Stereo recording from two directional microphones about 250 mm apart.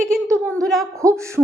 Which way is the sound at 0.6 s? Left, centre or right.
Centre.